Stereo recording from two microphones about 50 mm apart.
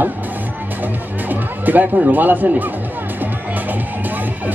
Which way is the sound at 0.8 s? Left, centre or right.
Right.